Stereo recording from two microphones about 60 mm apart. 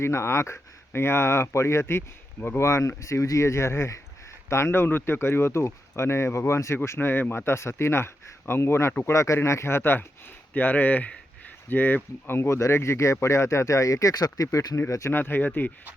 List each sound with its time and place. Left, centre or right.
0.0 s speech: left
9.0 s speech: left
10.5 s speech: left
12.4 s speech: left
14.8 s speech: left
15.1 s speech: left